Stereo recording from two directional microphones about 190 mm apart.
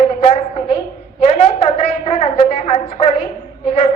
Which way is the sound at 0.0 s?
30° left (ahead or behind).